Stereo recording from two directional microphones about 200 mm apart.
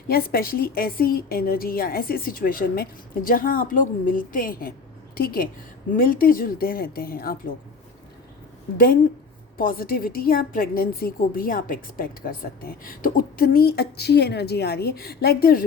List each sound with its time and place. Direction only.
0.1 s a woman's voice: 50° left (ahead or behind)
9.6 s a woman's voice: 45° left (ahead or behind)